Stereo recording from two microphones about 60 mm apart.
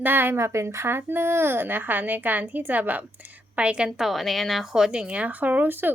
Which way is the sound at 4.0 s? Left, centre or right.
Centre.